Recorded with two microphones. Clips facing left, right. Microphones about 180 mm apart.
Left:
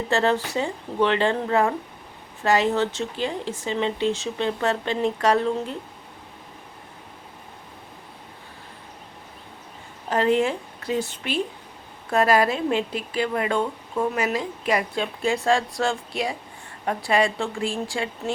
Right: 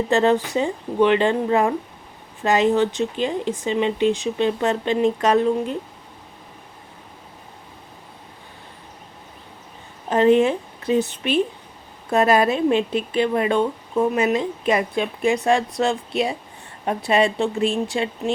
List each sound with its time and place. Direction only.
0.1 s speech: 15° right (ahead or behind)
10.1 s a woman's voice: 20° right (ahead or behind)